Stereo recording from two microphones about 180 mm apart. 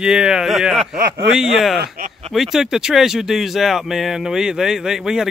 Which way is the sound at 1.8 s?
45° right (ahead or behind).